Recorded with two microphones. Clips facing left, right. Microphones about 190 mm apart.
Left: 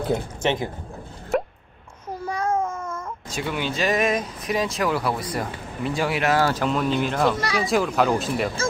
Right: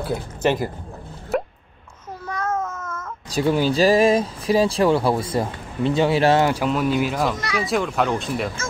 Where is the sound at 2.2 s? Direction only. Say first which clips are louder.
Left 1 dB; 10° left (ahead or behind).